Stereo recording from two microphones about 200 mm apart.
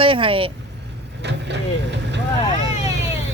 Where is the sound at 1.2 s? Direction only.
60° right (ahead or behind).